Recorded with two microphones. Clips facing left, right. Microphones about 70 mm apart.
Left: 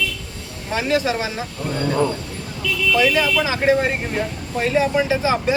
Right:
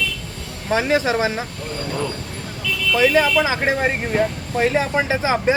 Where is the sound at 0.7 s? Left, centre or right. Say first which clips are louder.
Right 2 dB; right.